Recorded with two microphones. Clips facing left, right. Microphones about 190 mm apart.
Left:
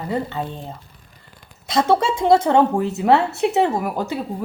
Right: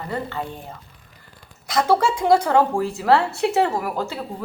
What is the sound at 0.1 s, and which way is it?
Speech, 20° left (ahead or behind).